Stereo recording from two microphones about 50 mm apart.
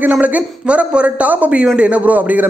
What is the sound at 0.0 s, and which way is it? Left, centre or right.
A man's voice, right.